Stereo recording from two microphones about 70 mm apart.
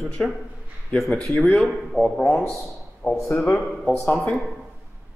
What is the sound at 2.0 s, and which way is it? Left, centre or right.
Speech, right.